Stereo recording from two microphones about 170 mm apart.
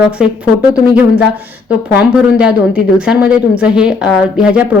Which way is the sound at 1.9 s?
5° right (ahead or behind).